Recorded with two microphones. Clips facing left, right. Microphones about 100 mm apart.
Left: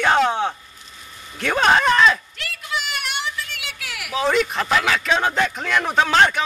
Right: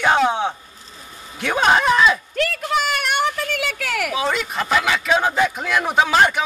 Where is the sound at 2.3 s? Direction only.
45° right (ahead or behind).